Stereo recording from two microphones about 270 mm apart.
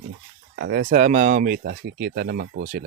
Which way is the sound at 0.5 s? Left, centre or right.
Right.